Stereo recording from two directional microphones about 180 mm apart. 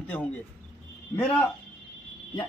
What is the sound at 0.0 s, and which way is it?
A man's voice, 10° left (ahead or behind).